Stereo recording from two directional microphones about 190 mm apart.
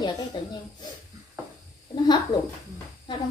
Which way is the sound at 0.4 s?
20° left (ahead or behind).